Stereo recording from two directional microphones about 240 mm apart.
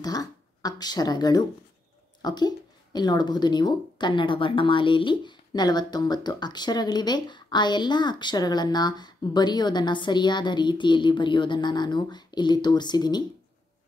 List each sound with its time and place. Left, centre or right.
0.0 s speech: centre